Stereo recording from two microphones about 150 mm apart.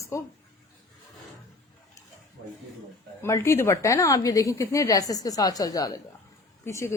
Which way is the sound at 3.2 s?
20° left (ahead or behind).